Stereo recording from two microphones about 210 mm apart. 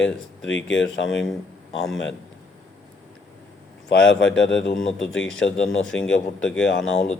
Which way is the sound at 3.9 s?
55° left (ahead or behind).